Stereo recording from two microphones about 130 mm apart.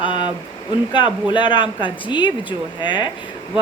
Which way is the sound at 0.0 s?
40° left (ahead or behind).